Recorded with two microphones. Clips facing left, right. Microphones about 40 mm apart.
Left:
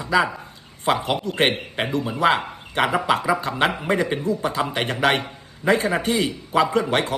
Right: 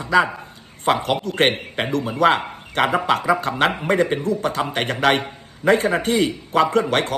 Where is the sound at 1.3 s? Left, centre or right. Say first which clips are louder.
Right 1 dB; right.